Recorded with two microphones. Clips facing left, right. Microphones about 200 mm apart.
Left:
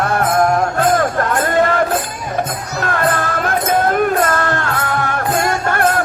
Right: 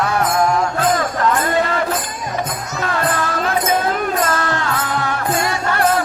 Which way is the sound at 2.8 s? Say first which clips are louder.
Left 2 dB; 55° left (ahead or behind).